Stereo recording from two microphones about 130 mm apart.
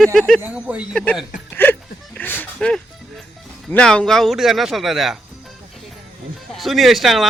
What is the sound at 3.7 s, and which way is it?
Speech, 5° left (ahead or behind).